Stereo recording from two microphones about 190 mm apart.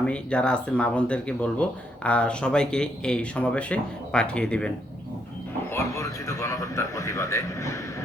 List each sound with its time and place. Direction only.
0.0 s speech: 5° left (ahead or behind)
5.7 s a man's voice: 15° left (ahead or behind)